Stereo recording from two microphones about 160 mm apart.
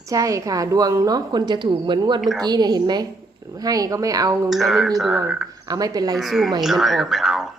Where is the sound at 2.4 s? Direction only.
25° right (ahead or behind).